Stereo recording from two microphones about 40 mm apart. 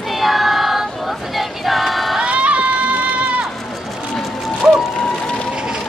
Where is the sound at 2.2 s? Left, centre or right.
Right.